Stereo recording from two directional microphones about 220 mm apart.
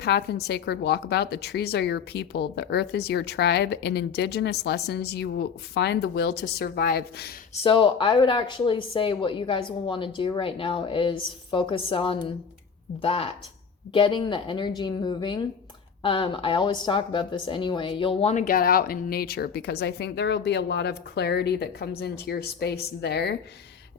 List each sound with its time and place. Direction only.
0.0 s speech: 50° left (ahead or behind)
7.5 s speech: 25° left (ahead or behind); by 23.3 s 50° left (ahead or behind)